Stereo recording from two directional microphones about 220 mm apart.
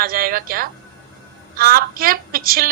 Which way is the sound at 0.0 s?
40° right (ahead or behind).